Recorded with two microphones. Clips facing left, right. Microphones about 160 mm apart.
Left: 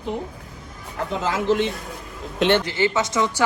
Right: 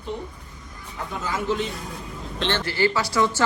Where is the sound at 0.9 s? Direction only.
90° left.